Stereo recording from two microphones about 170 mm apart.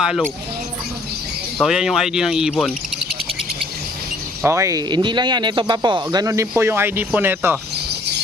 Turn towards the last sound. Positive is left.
turn(degrees=-15)  # may be behind; listen again after turning